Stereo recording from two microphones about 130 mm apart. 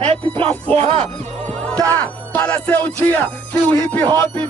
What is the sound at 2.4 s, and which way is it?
Speech, 10° left (ahead or behind).